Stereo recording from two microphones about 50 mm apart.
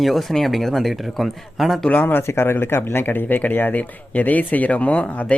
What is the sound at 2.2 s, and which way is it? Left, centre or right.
Speech, left.